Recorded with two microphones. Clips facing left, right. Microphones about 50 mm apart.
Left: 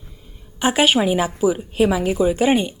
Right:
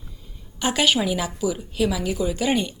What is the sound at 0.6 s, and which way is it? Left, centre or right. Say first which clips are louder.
A woman's voice: left 4 dB; left.